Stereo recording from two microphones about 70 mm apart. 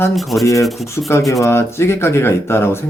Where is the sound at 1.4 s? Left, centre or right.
Left.